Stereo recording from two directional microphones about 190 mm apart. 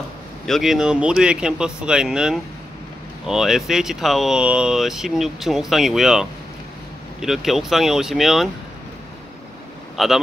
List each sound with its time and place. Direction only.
0.5 s speech: centre (ahead or behind)
10.0 s speech: centre (ahead or behind)